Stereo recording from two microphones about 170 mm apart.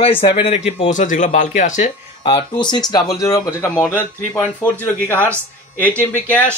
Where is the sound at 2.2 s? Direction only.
25° left (ahead or behind); by 5.3 s 10° left (ahead or behind).